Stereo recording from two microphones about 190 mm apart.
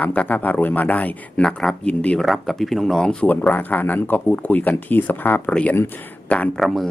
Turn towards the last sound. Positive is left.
turn(degrees=0)  # may be behind; listen again after turning